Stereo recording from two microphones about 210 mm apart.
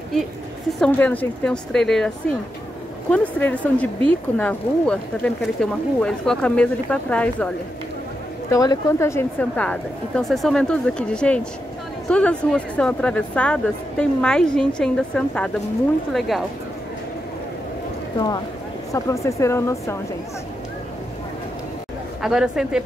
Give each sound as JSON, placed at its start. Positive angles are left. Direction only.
{"t": 0.7, "sound": "speech", "side_deg": 5}
{"t": 18.1, "sound": "speech", "side_deg": 20}
{"t": 22.2, "sound": "speech", "side_deg": 0}